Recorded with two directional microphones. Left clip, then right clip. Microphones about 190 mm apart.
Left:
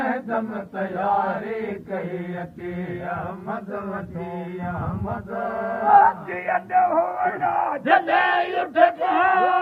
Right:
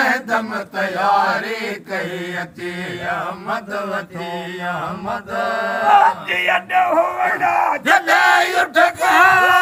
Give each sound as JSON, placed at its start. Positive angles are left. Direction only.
{"t": 0.0, "sound": "mantra", "side_deg": -10}
{"t": 4.6, "sound": "mantra", "side_deg": -35}
{"t": 5.9, "sound": "battle cry", "side_deg": -60}
{"t": 7.9, "sound": "battle cry", "side_deg": 15}
{"t": 8.6, "sound": "speech", "side_deg": 25}